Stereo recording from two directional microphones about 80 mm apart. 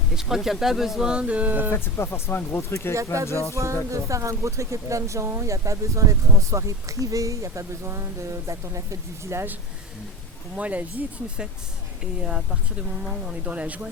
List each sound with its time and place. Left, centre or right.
0.2 s speech: centre; by 1.7 s right
1.7 s speech: left
2.9 s speech: right
3.2 s speech: left
3.5 s speech: right
10.5 s speech: centre